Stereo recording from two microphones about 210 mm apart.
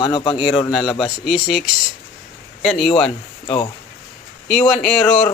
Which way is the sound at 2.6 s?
Centre (ahead or behind).